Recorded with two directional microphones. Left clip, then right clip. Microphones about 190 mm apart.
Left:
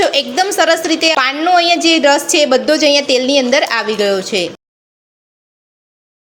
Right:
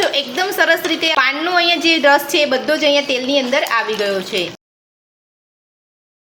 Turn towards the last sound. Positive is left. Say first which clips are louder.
# left 4 dB
turn(degrees=45)  # may be behind; listen again after turning